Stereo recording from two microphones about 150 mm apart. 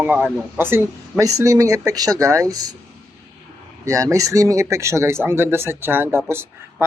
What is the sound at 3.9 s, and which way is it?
Speech, 20° right (ahead or behind).